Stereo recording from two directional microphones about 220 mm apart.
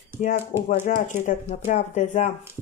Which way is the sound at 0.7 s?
30° left (ahead or behind).